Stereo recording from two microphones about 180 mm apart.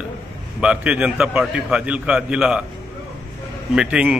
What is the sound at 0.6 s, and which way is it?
A man's voice, 5° right (ahead or behind).